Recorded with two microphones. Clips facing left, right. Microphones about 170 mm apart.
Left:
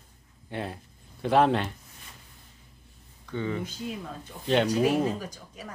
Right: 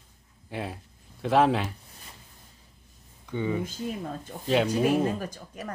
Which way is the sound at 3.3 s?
15° right (ahead or behind).